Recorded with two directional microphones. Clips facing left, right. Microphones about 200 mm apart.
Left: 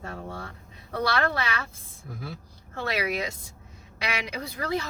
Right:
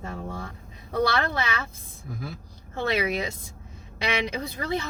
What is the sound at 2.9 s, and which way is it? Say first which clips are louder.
Speech: right 2 dB; 25° right (ahead or behind).